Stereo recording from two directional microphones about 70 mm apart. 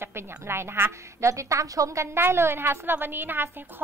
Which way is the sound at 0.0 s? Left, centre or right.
Right.